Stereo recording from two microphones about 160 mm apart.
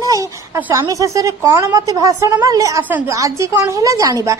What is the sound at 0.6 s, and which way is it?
A woman's voice, 20° right (ahead or behind).